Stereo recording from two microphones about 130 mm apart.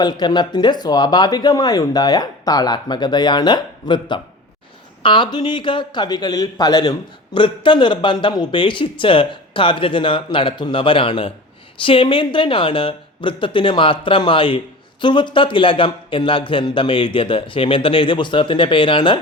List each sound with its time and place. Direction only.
0.0 s speech: 30° left (ahead or behind)